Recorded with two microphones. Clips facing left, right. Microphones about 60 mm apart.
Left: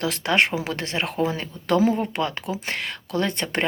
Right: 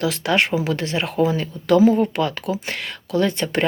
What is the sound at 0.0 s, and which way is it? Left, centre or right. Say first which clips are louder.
Speech: right 2 dB; left.